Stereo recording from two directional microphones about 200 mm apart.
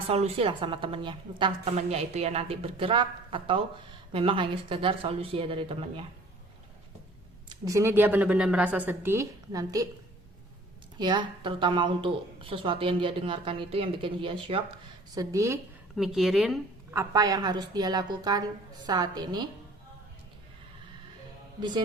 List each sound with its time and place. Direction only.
0.1 s a woman's voice: 30° right (ahead or behind)
7.6 s a woman's voice: 15° right (ahead or behind)
10.9 s a woman's voice: 25° right (ahead or behind)
16.0 s a woman's voice: centre (ahead or behind)
16.9 s a woman's voice: 15° right (ahead or behind)